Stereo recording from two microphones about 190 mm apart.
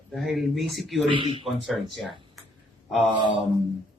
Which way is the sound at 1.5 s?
Centre (ahead or behind).